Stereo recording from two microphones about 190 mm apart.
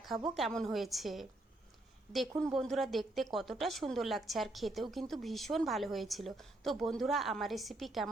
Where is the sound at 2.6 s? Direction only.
Centre (ahead or behind).